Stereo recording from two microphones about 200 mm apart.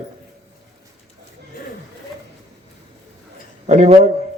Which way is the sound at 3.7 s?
35° right (ahead or behind).